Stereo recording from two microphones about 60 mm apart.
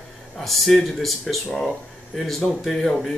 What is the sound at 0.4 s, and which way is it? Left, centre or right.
Speech, centre.